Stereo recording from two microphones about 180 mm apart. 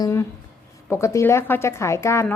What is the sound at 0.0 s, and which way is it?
A woman's voice, 15° left (ahead or behind).